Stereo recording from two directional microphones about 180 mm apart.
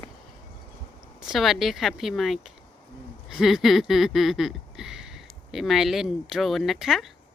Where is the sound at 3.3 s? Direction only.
Centre (ahead or behind).